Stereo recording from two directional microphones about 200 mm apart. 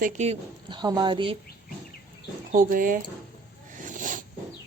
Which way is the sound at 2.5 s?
45° right (ahead or behind).